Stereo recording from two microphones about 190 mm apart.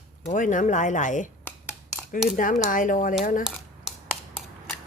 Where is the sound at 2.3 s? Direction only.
45° left (ahead or behind).